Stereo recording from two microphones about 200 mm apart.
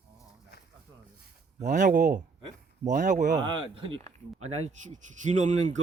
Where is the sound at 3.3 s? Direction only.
20° right (ahead or behind).